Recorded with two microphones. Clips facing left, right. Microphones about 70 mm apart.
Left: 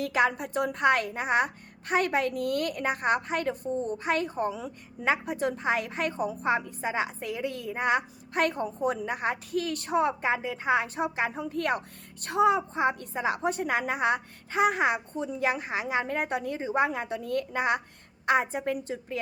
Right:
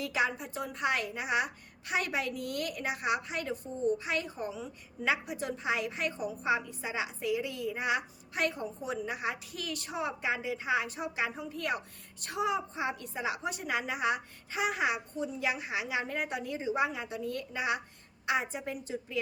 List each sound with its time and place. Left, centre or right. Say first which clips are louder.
0.0 s a woman's voice: left 6 dB; left
5.0 s a woman's voice: left 5 dB; left